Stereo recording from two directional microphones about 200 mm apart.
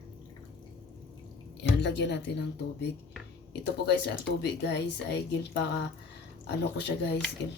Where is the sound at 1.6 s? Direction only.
60° left (ahead or behind).